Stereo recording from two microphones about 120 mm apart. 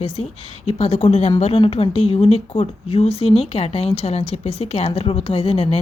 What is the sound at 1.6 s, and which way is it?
Speech, 45° left (ahead or behind).